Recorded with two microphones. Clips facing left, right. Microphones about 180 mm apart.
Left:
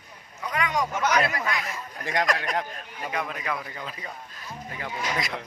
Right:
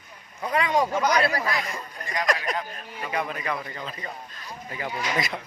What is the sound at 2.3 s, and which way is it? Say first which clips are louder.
A man's voice: even; centre (ahead or behind).